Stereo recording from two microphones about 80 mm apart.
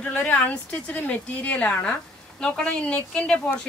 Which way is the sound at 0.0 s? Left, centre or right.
Centre.